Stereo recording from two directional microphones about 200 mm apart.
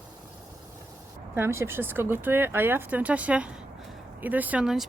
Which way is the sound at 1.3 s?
10° right (ahead or behind).